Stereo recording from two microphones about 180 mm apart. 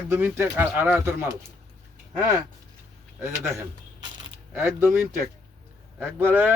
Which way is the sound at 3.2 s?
15° right (ahead or behind).